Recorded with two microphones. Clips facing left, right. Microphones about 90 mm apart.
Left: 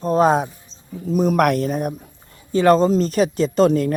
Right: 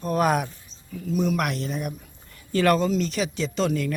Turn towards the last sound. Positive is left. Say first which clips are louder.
# left 9 dB
turn(degrees=40)  # may be behind; listen again after turning